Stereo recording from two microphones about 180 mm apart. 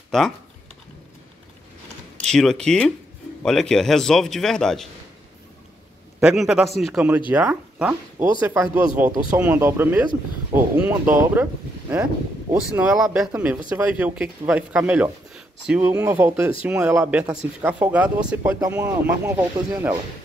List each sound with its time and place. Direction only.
0.1 s a man's voice: centre (ahead or behind)
2.1 s a man's voice: 5° left (ahead or behind)
6.2 s a man's voice: 5° right (ahead or behind)
12.7 s a man's voice: 5° right (ahead or behind)
19.0 s speech: 5° right (ahead or behind)
19.7 s speech: 20° right (ahead or behind)